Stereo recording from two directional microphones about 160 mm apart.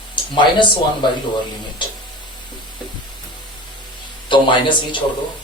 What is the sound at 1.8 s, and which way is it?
Speech, 30° left (ahead or behind).